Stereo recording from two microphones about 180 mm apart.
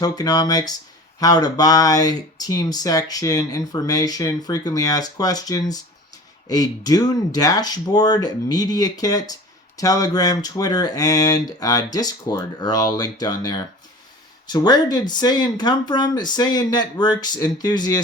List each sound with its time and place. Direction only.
0.0 s speech: 20° left (ahead or behind)